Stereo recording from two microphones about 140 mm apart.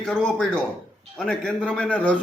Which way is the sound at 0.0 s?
5° left (ahead or behind).